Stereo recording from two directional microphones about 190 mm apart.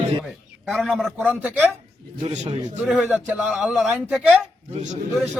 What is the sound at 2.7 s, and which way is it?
A man's voice, 5° right (ahead or behind).